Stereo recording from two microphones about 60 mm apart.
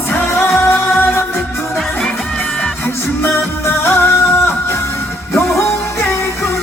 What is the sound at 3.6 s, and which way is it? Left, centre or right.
Music, left.